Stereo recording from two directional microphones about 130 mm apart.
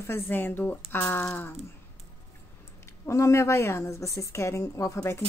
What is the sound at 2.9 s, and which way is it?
Speech, 25° left (ahead or behind).